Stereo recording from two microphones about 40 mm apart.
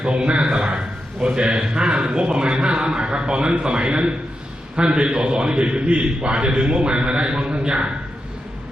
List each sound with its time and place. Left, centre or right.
0.0 s a man's voice: right